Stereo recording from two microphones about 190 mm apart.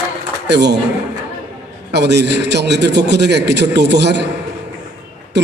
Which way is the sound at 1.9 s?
60° right (ahead or behind).